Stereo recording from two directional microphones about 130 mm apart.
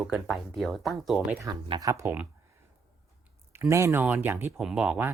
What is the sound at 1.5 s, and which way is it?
Speech, 30° right (ahead or behind).